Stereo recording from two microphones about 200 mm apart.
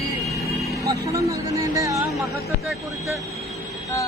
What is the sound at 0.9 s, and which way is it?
Speech, 15° right (ahead or behind).